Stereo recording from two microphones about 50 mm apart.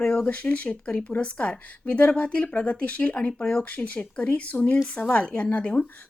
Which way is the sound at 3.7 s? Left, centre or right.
Left.